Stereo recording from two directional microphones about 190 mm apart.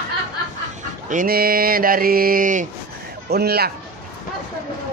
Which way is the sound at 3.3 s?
55° right (ahead or behind).